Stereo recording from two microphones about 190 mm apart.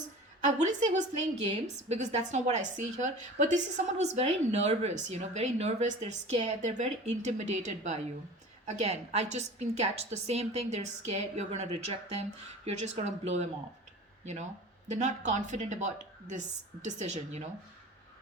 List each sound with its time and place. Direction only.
0.4 s a woman's voice: 40° right (ahead or behind)
14.8 s a woman's voice: 35° right (ahead or behind)